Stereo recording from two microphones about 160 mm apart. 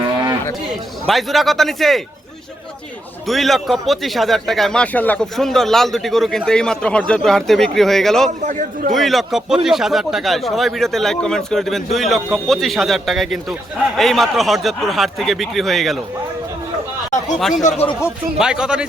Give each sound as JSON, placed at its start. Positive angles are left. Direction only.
{"t": 1.0, "sound": "speech", "side_deg": 0}
{"t": 3.2, "sound": "speech", "side_deg": 0}
{"t": 8.4, "sound": "a man's voice", "side_deg": -55}
{"t": 8.9, "sound": "speech", "side_deg": 0}
{"t": 17.6, "sound": "speech", "side_deg": 50}
{"t": 18.0, "sound": "speech", "side_deg": -5}